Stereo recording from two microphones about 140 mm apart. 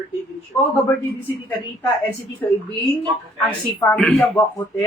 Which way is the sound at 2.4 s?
15° left (ahead or behind).